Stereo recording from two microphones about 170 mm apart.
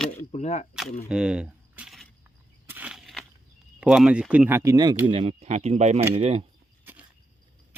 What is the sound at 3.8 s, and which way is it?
Speech, 5° right (ahead or behind).